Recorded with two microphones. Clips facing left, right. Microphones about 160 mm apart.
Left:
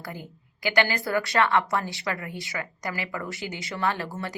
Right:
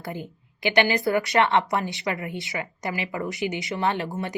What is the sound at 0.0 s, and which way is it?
A woman's voice, 25° right (ahead or behind).